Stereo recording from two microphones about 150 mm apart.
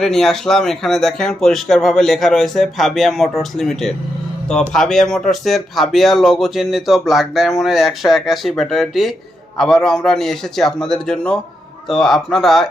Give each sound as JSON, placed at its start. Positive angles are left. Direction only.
{"t": 0.0, "sound": "speech", "side_deg": 5}